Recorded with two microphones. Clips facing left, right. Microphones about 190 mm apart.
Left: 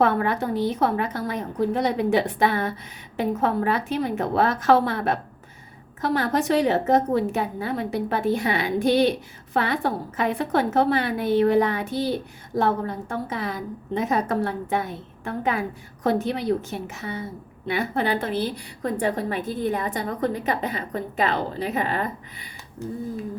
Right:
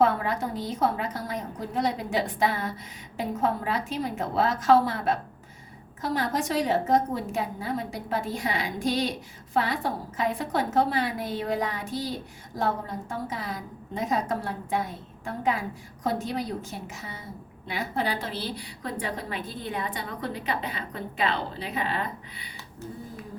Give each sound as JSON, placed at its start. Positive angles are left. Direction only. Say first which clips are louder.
{"t": 0.0, "sound": "a woman's voice", "louder": "left 3 dB", "side_deg": 65}